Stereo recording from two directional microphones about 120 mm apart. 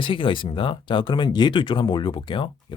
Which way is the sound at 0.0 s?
45° left (ahead or behind).